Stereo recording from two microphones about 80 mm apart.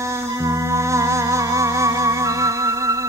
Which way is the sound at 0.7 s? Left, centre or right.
Right.